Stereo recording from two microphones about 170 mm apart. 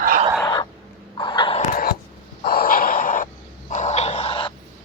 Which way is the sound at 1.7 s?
60° left (ahead or behind).